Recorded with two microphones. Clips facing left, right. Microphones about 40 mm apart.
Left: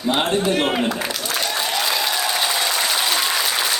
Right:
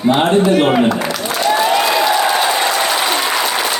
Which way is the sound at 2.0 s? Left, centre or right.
Right.